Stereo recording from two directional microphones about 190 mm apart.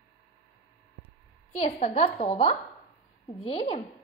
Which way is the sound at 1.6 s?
35° left (ahead or behind).